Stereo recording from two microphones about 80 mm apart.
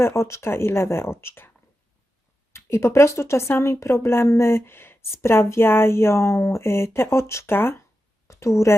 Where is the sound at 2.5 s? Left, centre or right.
Left.